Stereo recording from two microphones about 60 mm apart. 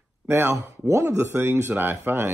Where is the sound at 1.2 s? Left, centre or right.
Right.